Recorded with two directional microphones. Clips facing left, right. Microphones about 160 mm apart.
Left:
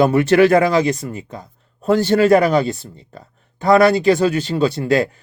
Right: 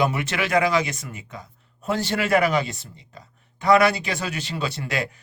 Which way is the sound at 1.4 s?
50° left (ahead or behind).